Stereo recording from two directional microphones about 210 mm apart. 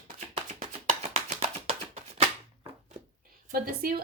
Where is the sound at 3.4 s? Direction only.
40° right (ahead or behind).